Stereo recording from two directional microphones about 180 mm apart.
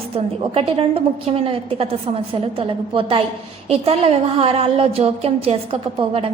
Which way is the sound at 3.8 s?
35° right (ahead or behind).